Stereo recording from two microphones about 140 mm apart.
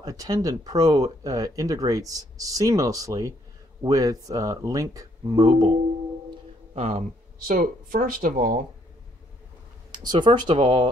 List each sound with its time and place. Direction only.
0.0 s speech: 25° right (ahead or behind)
6.7 s speech: 55° right (ahead or behind); by 8.6 s 75° right (ahead or behind)
9.8 s speech: 30° right (ahead or behind)